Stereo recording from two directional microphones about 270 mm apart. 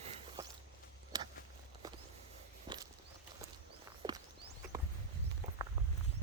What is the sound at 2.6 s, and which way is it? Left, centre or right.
Walk, centre.